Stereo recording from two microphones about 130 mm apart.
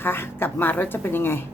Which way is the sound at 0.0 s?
15° left (ahead or behind).